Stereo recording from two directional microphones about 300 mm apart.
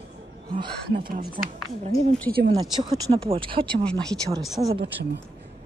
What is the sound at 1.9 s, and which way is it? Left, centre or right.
Speech, centre.